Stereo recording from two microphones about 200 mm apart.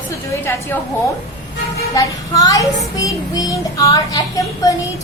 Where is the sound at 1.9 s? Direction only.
15° left (ahead or behind).